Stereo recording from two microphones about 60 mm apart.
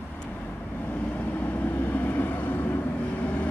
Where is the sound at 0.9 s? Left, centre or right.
Left.